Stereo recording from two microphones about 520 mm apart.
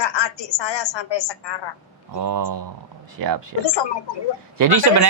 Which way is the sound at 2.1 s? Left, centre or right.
Right.